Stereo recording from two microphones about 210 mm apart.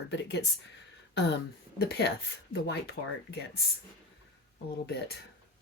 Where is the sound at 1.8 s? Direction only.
50° left (ahead or behind).